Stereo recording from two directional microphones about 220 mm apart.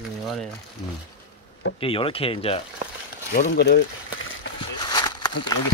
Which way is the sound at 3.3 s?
45° left (ahead or behind).